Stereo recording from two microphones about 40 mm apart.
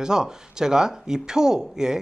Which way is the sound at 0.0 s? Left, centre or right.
Centre.